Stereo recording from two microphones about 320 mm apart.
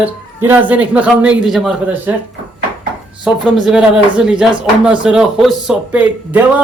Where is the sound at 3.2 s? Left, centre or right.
Centre.